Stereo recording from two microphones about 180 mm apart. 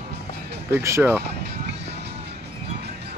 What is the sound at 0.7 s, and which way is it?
Speech, 15° right (ahead or behind).